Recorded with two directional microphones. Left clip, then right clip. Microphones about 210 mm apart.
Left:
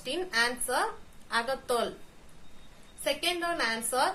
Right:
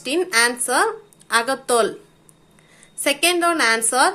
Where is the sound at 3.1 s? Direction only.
30° right (ahead or behind).